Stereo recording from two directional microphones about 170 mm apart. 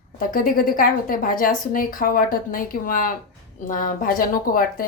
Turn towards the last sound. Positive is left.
turn(degrees=55)  # may be behind; listen again after turning